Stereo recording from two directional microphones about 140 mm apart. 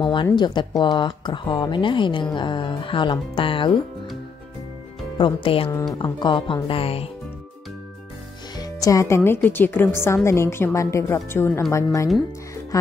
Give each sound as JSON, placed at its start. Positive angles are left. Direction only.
{"t": 0.0, "sound": "speech", "side_deg": 35}
{"t": 5.1, "sound": "speech", "side_deg": 35}
{"t": 8.5, "sound": "a woman's voice", "side_deg": 25}